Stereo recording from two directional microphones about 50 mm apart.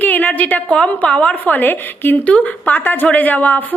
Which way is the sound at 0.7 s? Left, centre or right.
Centre.